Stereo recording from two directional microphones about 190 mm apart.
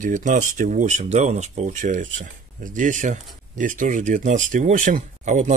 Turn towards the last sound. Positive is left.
turn(degrees=-40)  # may be behind; listen again after turning